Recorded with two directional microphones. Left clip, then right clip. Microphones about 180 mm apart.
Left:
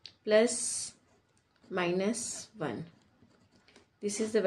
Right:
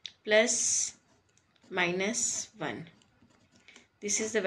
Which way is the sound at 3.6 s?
60° left (ahead or behind).